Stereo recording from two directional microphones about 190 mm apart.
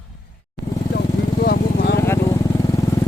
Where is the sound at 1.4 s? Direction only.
60° left (ahead or behind).